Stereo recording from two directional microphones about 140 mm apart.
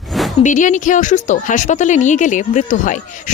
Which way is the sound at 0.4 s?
65° left (ahead or behind).